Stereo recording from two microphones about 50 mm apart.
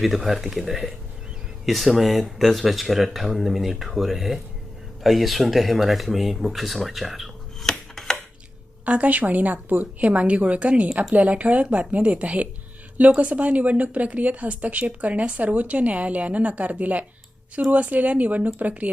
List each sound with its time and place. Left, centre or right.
0.3 s speech: centre
7.7 s chopping: centre
8.8 s a woman's voice: right